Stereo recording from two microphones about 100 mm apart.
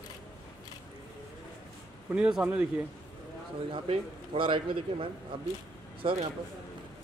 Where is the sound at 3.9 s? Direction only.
70° right (ahead or behind).